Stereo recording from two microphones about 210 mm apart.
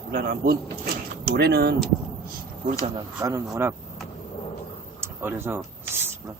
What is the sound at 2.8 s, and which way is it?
Speech, 20° right (ahead or behind).